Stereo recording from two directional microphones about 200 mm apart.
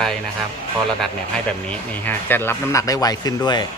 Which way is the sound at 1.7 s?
10° left (ahead or behind).